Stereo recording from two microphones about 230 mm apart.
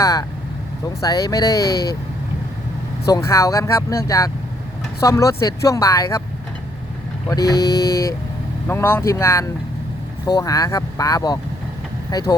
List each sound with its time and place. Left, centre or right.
0.0 s speech: centre
3.1 s speech: centre
7.3 s speech: centre